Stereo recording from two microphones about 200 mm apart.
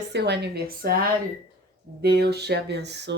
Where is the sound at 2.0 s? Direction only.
55° right (ahead or behind).